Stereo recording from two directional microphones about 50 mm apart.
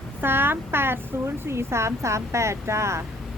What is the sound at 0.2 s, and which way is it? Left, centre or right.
Speech, right.